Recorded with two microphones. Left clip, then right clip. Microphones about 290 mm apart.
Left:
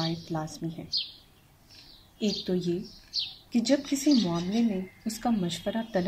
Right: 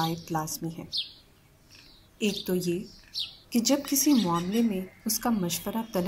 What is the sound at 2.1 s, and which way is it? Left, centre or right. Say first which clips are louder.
Speech: right 1 dB; left.